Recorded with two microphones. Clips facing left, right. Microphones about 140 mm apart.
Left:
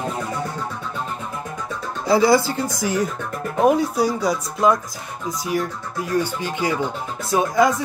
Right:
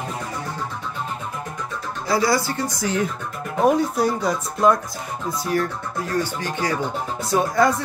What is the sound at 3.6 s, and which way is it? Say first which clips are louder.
Speech: left 1 dB; 5° left (ahead or behind).